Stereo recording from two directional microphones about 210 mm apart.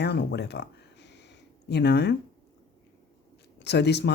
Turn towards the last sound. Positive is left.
turn(degrees=55)  # may be behind; listen again after turning